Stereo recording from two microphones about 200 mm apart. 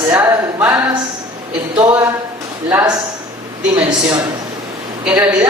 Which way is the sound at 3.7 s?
20° right (ahead or behind).